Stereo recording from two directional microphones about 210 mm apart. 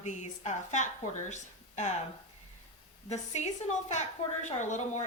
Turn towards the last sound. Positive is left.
turn(degrees=35)  # may be behind; listen again after turning